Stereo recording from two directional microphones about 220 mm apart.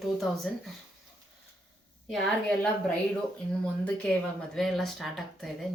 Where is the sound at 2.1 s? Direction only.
5° left (ahead or behind).